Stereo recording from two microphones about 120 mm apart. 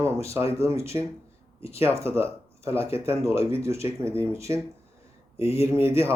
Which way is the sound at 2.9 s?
20° right (ahead or behind).